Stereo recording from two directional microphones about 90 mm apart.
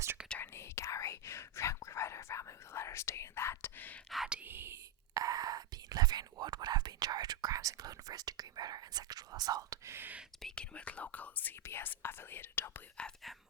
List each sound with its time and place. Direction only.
0.4 s whispering: 30° left (ahead or behind)
4.1 s whispering: 5° right (ahead or behind)
4.4 s whispering: 20° right (ahead or behind)
5.1 s whispering: 45° right (ahead or behind)
9.9 s speech: 20° right (ahead or behind)
10.4 s speech: 10° left (ahead or behind)
13.2 s speech: centre (ahead or behind)